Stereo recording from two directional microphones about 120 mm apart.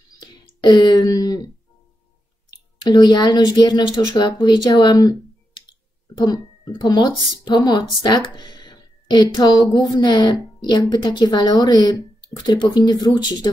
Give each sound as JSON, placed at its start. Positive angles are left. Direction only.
{"t": 0.2, "sound": "clicking", "side_deg": 35}
{"t": 2.9, "sound": "a woman's voice", "side_deg": 40}